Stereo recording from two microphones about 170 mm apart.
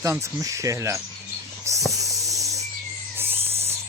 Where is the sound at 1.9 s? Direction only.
20° right (ahead or behind).